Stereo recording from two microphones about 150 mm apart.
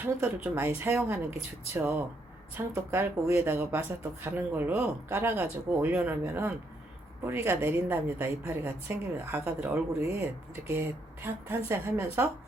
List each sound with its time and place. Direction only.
0.0 s a woman's voice: 15° right (ahead or behind)